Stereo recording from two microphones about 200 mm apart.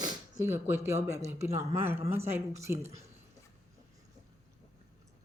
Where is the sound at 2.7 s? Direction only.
30° right (ahead or behind).